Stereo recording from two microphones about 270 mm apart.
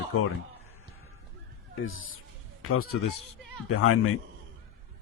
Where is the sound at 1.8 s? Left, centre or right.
Left.